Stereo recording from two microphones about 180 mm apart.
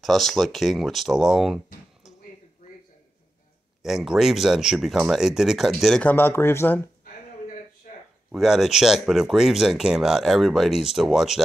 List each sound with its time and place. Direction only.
0.0 s speech: centre (ahead or behind)
3.8 s speech: centre (ahead or behind)
7.8 s a sound: 50° left (ahead or behind)
8.3 s speech: centre (ahead or behind)